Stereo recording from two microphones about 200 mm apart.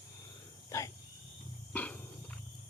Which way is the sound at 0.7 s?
15° left (ahead or behind).